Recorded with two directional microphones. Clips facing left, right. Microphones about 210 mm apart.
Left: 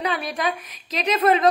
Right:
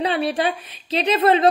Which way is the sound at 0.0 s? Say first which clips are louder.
Right 5 dB; 30° right (ahead or behind).